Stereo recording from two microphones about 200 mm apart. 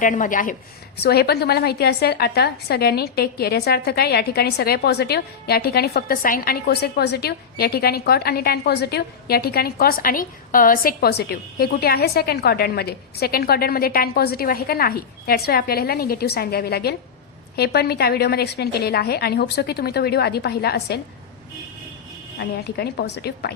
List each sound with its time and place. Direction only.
0.0 s a woman's voice: 40° left (ahead or behind)
1.0 s a woman's voice: 55° left (ahead or behind)
22.4 s a woman's voice: 55° left (ahead or behind)